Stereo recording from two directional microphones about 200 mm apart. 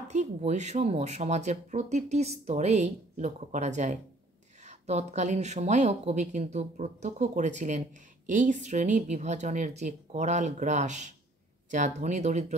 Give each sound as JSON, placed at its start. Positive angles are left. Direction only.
{"t": 0.1, "sound": "speech", "side_deg": -35}